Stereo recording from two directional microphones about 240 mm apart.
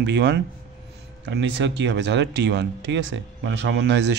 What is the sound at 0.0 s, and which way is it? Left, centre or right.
Speech, right.